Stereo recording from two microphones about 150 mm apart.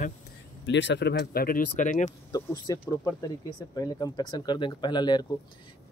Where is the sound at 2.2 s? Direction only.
25° left (ahead or behind).